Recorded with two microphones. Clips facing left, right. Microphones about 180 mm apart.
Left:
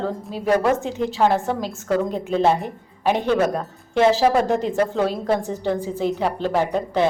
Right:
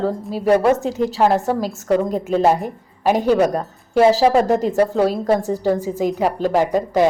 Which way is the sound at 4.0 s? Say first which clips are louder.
Right 3 dB; 35° right (ahead or behind).